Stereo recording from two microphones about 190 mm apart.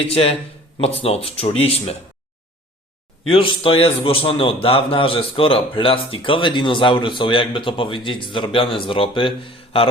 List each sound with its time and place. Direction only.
0.1 s speech: 30° left (ahead or behind)
3.2 s a man's voice: 30° left (ahead or behind)